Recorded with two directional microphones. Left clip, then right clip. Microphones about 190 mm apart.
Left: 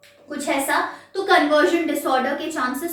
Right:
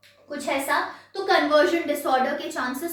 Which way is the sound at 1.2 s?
15° right (ahead or behind).